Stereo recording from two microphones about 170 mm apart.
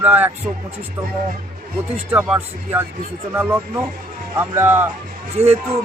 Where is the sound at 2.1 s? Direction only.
5° right (ahead or behind).